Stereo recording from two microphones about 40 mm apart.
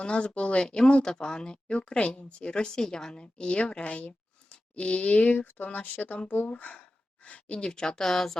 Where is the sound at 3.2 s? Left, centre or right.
Left.